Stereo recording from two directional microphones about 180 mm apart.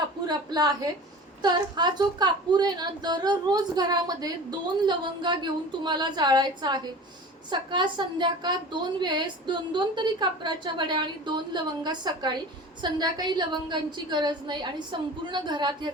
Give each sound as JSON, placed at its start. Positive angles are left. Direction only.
{"t": 0.3, "sound": "a woman's voice", "side_deg": -20}